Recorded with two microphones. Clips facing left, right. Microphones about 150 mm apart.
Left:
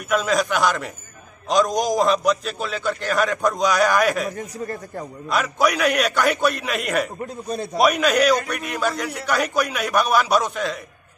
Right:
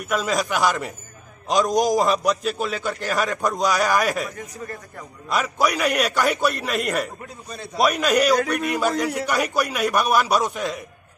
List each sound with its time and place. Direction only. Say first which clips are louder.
0.1 s a man's voice: left 3 dB; centre (ahead or behind)
4.4 s speech: left 5 dB; 30° left (ahead or behind)
5.3 s a man's voice: left 1 dB; centre (ahead or behind)